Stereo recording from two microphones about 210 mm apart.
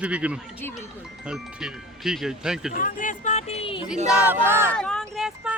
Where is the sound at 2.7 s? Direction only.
40° left (ahead or behind).